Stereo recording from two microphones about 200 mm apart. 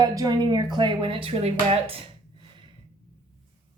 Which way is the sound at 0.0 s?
20° right (ahead or behind).